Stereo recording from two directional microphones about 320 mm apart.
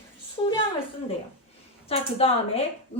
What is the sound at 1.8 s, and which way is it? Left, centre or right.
Speech, centre.